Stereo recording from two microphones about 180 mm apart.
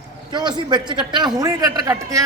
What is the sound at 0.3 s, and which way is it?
A man's voice, 25° right (ahead or behind).